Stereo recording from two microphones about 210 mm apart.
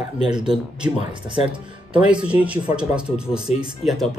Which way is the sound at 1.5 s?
5° right (ahead or behind).